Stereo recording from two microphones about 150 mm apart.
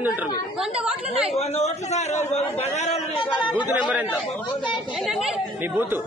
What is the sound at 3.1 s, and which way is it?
Speech, 30° left (ahead or behind).